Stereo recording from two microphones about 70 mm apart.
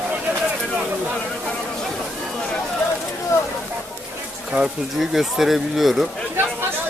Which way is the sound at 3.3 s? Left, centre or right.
Left.